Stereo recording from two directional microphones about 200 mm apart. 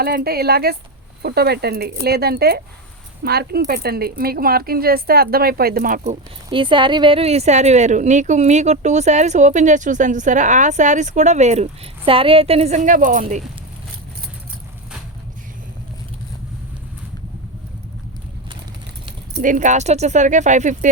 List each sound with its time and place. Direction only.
0.0 s a woman's voice: 50° right (ahead or behind)
19.4 s a woman's voice: 40° right (ahead or behind)